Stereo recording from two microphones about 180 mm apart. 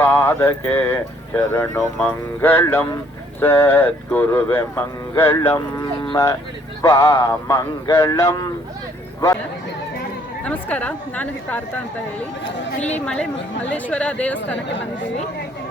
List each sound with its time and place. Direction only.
0.0 s speech: 10° left (ahead or behind)
6.0 s livestock: 20° left (ahead or behind)
6.8 s speech: 15° left (ahead or behind)
10.4 s speech: 10° left (ahead or behind)
13.7 s speech: 10° left (ahead or behind)